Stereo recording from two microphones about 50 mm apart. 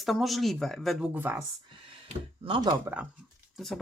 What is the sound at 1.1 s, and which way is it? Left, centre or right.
Speech, right.